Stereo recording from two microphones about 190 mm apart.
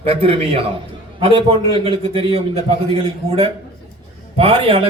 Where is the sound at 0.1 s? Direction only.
30° right (ahead or behind).